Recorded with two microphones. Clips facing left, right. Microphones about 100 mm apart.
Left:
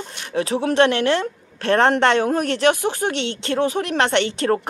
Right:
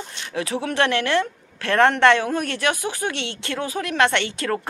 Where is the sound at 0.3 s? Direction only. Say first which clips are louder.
Left 5 dB; 30° left (ahead or behind).